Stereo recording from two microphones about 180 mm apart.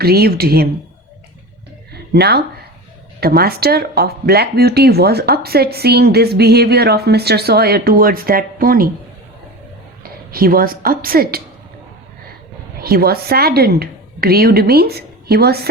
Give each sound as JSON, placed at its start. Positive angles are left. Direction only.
{"t": 0.0, "sound": "speech", "side_deg": -60}
{"t": 1.9, "sound": "a sound", "side_deg": -65}
{"t": 3.2, "sound": "speech", "side_deg": -60}
{"t": 10.0, "sound": "a woman's voice", "side_deg": -55}
{"t": 12.8, "sound": "a woman's voice", "side_deg": -60}